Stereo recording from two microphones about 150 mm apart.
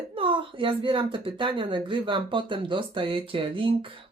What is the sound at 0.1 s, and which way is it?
Speech, 35° right (ahead or behind).